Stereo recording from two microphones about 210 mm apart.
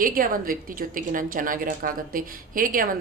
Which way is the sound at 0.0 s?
40° right (ahead or behind).